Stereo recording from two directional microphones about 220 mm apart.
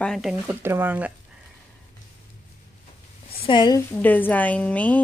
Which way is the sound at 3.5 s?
20° left (ahead or behind).